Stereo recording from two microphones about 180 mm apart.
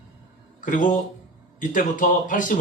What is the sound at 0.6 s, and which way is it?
Speech, 45° left (ahead or behind).